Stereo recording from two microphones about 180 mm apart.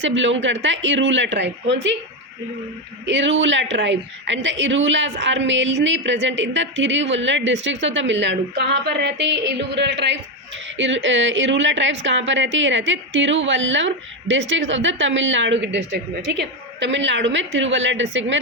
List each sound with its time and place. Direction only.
0.0 s a woman's voice: 90° right
3.1 s a woman's voice: 85° right; by 10.2 s 70° right (ahead or behind)
10.8 s a woman's voice: 90° right